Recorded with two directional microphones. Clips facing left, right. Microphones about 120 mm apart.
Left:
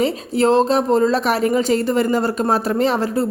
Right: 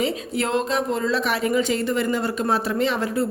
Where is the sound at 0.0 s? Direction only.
30° left (ahead or behind).